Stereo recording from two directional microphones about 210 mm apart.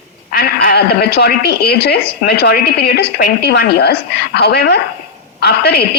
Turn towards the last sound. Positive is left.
turn(degrees=50)  # may be behind; listen again after turning